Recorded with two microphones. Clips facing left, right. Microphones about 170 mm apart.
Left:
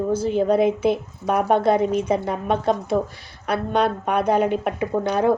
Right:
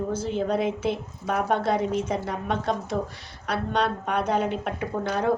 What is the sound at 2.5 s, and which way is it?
Speech, 55° left (ahead or behind).